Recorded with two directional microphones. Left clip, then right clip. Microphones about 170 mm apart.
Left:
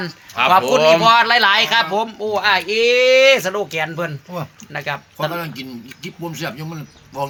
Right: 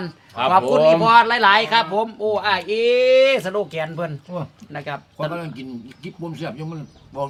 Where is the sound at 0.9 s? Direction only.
25° left (ahead or behind); by 5.0 s 45° left (ahead or behind).